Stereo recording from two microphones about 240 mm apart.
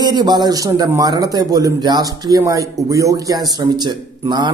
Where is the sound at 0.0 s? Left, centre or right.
Centre.